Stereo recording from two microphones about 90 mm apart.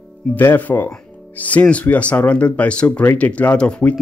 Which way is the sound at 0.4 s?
20° left (ahead or behind).